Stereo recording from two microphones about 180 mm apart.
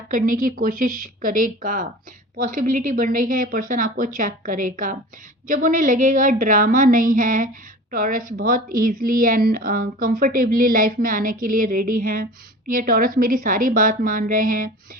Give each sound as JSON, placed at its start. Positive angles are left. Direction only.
{"t": 0.1, "sound": "a woman's voice", "side_deg": -50}